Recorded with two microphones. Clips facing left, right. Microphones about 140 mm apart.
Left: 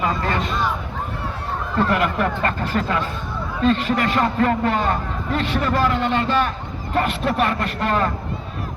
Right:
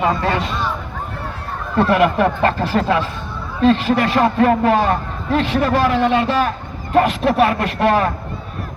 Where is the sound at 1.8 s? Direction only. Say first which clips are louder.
Right 8 dB; 80° right.